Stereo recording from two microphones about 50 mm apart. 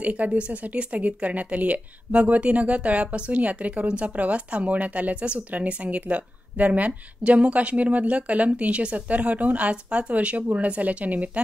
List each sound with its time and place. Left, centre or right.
0.0 s speech: right